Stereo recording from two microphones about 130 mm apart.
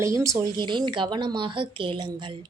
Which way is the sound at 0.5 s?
35° right (ahead or behind).